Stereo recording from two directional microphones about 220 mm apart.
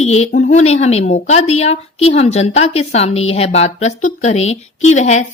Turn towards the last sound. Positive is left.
turn(degrees=30)  # may be behind; listen again after turning